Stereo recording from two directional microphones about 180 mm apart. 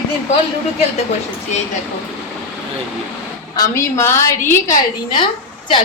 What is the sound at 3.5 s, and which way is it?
A woman's voice, 15° left (ahead or behind).